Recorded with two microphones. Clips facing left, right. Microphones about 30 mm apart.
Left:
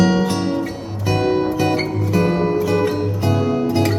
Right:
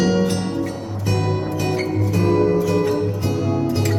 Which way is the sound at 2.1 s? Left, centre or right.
Left.